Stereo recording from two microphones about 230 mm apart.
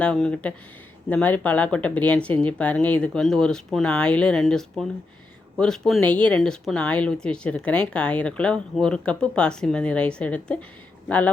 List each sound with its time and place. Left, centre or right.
0.0 s speech: centre